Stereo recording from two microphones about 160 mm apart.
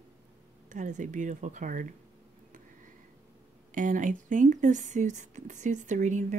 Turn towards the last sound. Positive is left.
turn(degrees=-50)  # may be behind; listen again after turning